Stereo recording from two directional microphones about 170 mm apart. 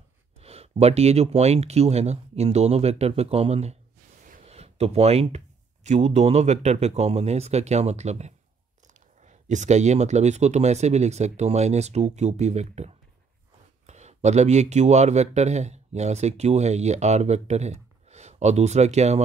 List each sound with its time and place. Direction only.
0.4 s speech: 35° right (ahead or behind)